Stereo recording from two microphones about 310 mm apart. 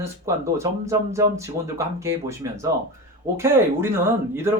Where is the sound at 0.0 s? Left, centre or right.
Centre.